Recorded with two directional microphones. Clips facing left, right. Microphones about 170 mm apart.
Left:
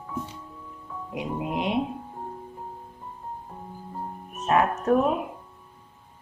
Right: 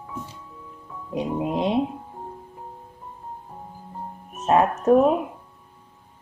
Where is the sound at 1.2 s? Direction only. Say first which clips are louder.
Right 5 dB; 25° right (ahead or behind).